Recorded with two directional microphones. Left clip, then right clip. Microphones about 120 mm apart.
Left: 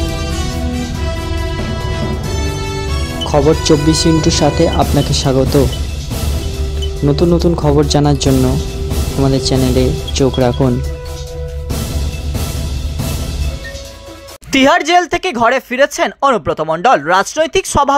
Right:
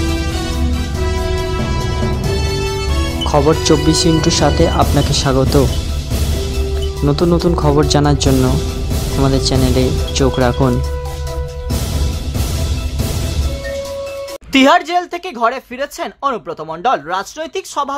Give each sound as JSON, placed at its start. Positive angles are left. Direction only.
{"t": 3.3, "sound": "speech", "side_deg": 0}
{"t": 7.1, "sound": "speech", "side_deg": 0}
{"t": 14.5, "sound": "speech", "side_deg": 45}